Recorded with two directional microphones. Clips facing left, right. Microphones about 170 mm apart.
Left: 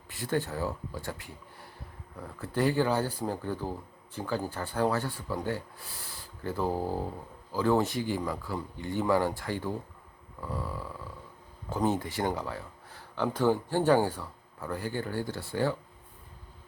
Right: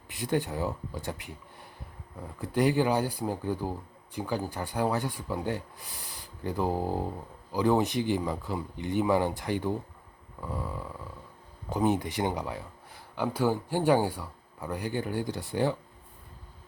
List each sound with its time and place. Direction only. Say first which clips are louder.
0.1 s speech: right 2 dB; 15° right (ahead or behind)